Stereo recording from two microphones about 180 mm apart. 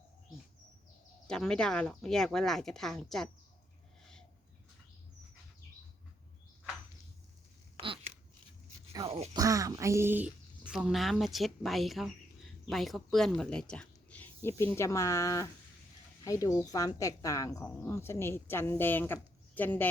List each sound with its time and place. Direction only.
1.3 s speech: 5° left (ahead or behind)
7.8 s a sound: 30° right (ahead or behind)
9.0 s speech: 35° right (ahead or behind)
9.3 s a woman's voice: 20° right (ahead or behind); by 19.9 s 10° left (ahead or behind)